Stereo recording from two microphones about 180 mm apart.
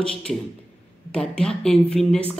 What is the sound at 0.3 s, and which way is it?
A man's voice, centre (ahead or behind).